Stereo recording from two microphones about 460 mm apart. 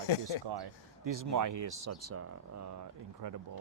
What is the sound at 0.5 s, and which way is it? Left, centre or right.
Speech, right.